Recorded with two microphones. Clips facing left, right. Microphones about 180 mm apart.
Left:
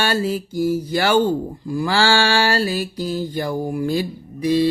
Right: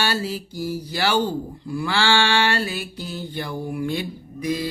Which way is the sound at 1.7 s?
40° left (ahead or behind).